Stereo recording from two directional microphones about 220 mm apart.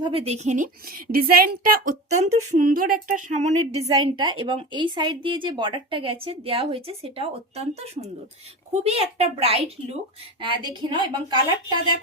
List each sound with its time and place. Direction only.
0.0 s speech: 25° right (ahead or behind)